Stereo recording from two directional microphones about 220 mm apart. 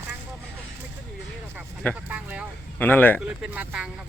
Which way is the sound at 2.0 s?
5° right (ahead or behind).